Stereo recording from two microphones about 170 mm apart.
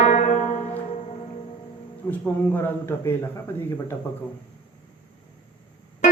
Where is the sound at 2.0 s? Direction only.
10° left (ahead or behind).